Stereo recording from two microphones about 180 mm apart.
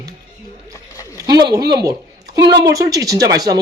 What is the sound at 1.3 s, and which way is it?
A woman's voice, 20° right (ahead or behind).